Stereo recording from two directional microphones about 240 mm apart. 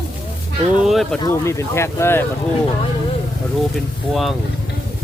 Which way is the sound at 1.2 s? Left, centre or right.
Centre.